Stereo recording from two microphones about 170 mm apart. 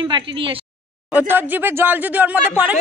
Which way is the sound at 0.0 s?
30° right (ahead or behind).